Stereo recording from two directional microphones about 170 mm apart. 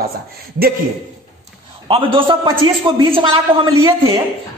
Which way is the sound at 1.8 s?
30° right (ahead or behind).